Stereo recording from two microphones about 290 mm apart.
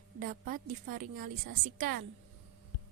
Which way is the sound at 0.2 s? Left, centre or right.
Right.